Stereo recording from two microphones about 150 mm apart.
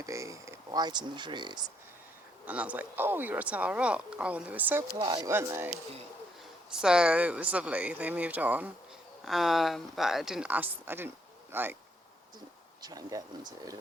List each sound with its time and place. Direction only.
0.0 s speech: 20° right (ahead or behind)
2.5 s speech: 10° right (ahead or behind)
4.9 s speech: 30° right (ahead or behind)
5.3 s speech: 15° right (ahead or behind)
6.7 s speech: 5° right (ahead or behind)
12.8 s speech: 25° right (ahead or behind)